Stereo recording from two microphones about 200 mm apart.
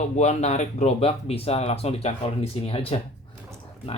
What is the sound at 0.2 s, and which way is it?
Speech, 35° left (ahead or behind).